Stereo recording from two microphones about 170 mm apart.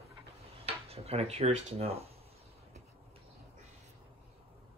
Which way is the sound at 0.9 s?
35° right (ahead or behind).